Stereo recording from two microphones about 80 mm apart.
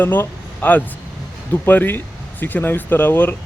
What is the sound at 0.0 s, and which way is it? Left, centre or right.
Speech, left.